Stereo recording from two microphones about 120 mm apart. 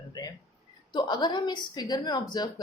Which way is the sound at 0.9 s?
40° left (ahead or behind).